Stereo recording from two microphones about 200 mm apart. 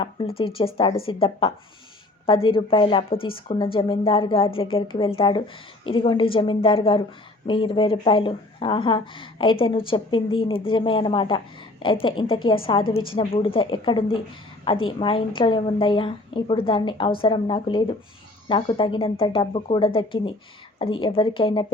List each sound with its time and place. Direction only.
0.3 s speech: 25° left (ahead or behind)